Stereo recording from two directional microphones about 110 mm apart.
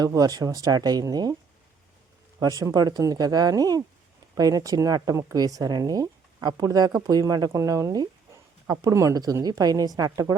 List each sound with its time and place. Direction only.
0.0 s speech: 35° right (ahead or behind)
2.4 s speech: 30° right (ahead or behind)